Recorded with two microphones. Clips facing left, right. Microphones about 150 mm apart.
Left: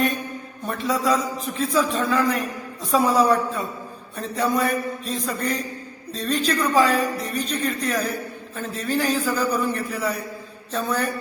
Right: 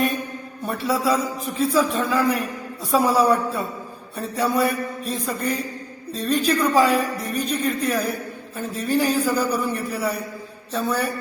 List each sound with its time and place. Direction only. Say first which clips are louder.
0.6 s a man's voice: right 1 dB; 10° right (ahead or behind)